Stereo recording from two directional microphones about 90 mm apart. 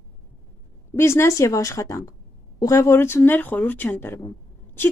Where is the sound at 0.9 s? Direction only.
30° left (ahead or behind).